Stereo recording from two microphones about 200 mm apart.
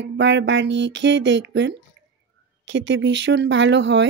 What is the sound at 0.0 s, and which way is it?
Speech, 65° right (ahead or behind).